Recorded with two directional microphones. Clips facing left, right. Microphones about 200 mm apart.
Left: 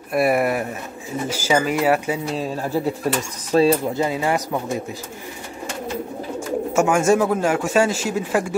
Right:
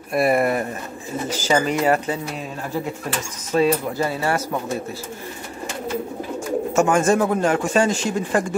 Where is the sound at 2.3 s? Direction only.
35° left (ahead or behind); by 4.8 s 15° left (ahead or behind).